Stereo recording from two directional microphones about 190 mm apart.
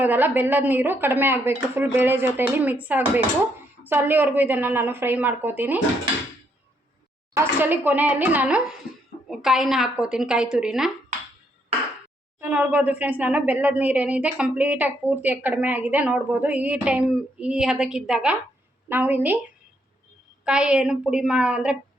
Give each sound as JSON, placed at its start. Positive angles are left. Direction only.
{"t": 0.0, "sound": "speech", "side_deg": -10}
{"t": 7.3, "sound": "a woman's voice", "side_deg": -10}
{"t": 12.4, "sound": "speech", "side_deg": -10}
{"t": 20.4, "sound": "a woman's voice", "side_deg": -5}